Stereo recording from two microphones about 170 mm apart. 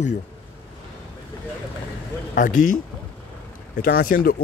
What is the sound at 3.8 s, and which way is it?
Speech, 55° left (ahead or behind).